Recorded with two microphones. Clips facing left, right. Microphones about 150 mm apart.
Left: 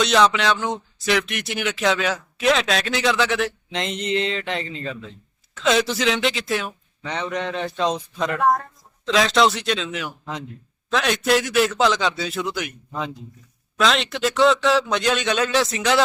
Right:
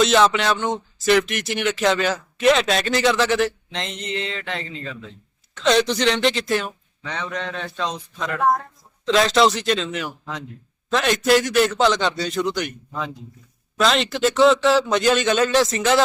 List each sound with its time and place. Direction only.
0.0 s speech: centre (ahead or behind)
3.7 s speech: 15° left (ahead or behind)
5.5 s speech: centre (ahead or behind)
7.0 s a man's voice: 20° left (ahead or behind)
8.4 s speech: 5° right (ahead or behind)
13.7 s speech: centre (ahead or behind)